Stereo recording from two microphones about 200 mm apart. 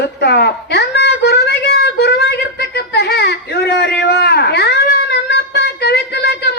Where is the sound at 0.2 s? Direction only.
55° left (ahead or behind).